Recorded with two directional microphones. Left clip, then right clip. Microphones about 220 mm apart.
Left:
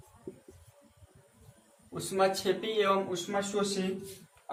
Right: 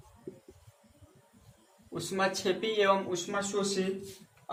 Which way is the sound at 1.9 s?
35° right (ahead or behind).